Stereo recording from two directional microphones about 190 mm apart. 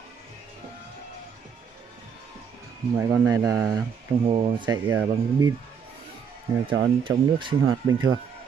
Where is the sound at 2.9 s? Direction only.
15° right (ahead or behind).